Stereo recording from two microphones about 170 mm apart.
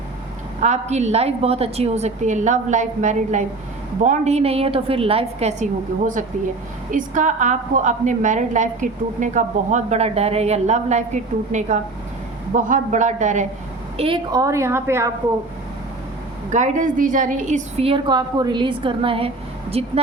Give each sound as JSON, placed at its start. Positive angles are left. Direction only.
{"t": 0.6, "sound": "a woman's voice", "side_deg": -40}
{"t": 6.9, "sound": "a woman's voice", "side_deg": -50}
{"t": 13.9, "sound": "a woman's voice", "side_deg": -30}
{"t": 14.4, "sound": "a woman's voice", "side_deg": -15}
{"t": 16.5, "sound": "a woman's voice", "side_deg": -45}